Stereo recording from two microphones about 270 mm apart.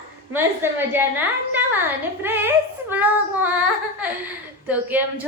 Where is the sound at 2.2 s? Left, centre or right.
Centre.